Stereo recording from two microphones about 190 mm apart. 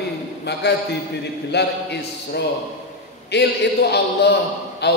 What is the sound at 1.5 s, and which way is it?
A man's voice, 60° left (ahead or behind).